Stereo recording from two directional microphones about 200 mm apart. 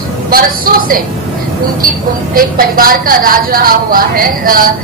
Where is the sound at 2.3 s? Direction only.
45° right (ahead or behind).